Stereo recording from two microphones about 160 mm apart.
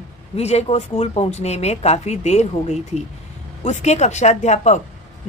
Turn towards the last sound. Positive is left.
turn(degrees=45)  # may be behind; listen again after turning